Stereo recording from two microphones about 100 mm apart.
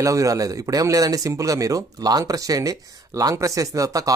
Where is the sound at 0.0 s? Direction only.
35° right (ahead or behind).